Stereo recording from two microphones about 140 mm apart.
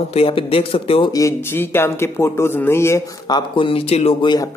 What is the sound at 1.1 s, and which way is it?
A man's voice, 20° left (ahead or behind).